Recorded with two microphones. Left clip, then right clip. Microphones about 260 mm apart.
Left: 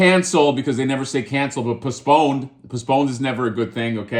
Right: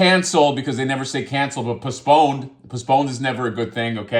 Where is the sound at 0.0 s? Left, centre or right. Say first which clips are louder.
Even; centre.